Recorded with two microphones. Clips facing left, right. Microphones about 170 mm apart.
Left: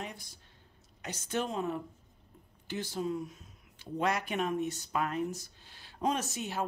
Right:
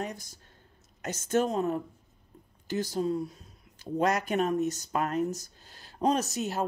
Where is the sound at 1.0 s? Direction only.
45° right (ahead or behind).